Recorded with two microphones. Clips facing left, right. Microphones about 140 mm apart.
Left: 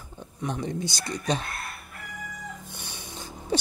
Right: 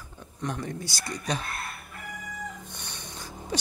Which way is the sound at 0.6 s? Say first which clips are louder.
Left 4 dB; 20° left (ahead or behind).